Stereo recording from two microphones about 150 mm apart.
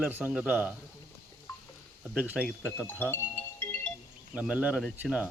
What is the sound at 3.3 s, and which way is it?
Music, 15° left (ahead or behind).